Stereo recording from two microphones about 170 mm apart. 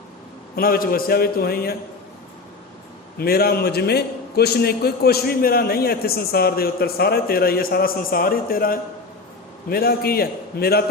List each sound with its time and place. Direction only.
0.5 s a man's voice: 60° left (ahead or behind)
3.2 s a man's voice: 65° left (ahead or behind)